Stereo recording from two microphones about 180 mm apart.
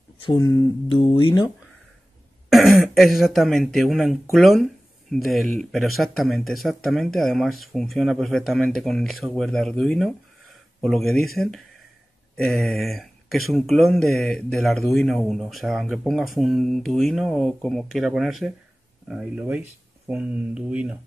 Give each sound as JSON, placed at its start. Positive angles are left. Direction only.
{"t": 0.2, "sound": "speech", "side_deg": 25}
{"t": 2.5, "sound": "speech", "side_deg": 0}